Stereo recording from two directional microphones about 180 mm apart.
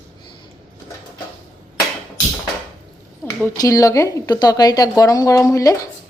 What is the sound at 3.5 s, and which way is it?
Speech, 20° left (ahead or behind).